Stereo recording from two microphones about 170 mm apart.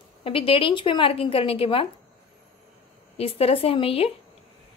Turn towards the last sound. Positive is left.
turn(degrees=35)  # may be behind; listen again after turning